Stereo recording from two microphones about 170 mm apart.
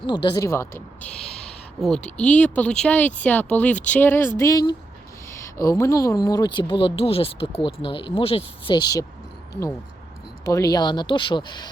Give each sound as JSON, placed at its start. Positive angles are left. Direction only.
{"t": 0.0, "sound": "speech", "side_deg": 25}
{"t": 1.2, "sound": "a sound", "side_deg": 5}
{"t": 2.0, "sound": "speech", "side_deg": 5}
{"t": 10.4, "sound": "speech", "side_deg": 20}